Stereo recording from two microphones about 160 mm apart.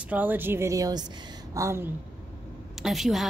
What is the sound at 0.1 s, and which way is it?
A woman's voice, 10° right (ahead or behind).